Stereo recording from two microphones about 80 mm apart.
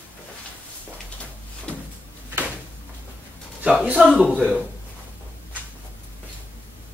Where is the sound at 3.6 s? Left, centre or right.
Centre.